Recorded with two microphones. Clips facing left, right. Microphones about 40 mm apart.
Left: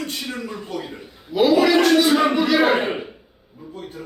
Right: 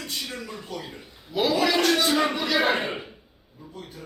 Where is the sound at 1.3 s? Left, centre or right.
Centre.